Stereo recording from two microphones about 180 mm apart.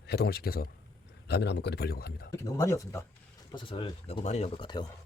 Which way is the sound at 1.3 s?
70° left (ahead or behind).